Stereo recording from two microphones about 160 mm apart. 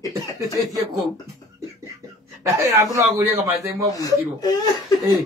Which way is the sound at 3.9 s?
25° left (ahead or behind).